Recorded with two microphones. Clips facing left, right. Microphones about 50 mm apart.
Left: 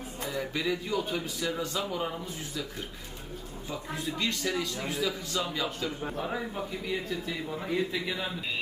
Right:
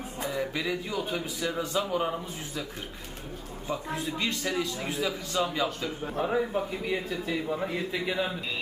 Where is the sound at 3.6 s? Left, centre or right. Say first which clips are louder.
Right 3 dB; centre.